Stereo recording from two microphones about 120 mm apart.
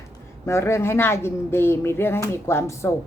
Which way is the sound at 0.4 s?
20° left (ahead or behind).